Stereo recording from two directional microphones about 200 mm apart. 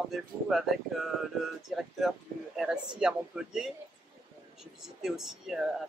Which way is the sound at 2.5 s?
5° right (ahead or behind).